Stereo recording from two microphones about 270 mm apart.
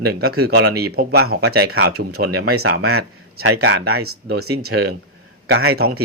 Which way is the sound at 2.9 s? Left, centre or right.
Right.